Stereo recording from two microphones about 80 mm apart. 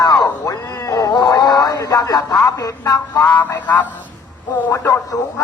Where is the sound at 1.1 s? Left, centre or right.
Left.